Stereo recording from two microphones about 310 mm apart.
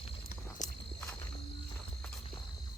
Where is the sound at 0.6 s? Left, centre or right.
Left.